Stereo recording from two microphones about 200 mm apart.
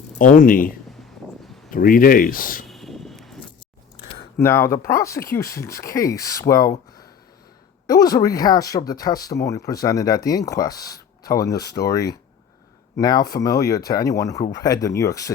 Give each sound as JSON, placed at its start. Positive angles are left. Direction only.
{"t": 0.2, "sound": "speech", "side_deg": 40}
{"t": 1.7, "sound": "speech", "side_deg": 45}
{"t": 2.6, "sound": "a sound", "side_deg": 0}
{"t": 4.4, "sound": "speech", "side_deg": 10}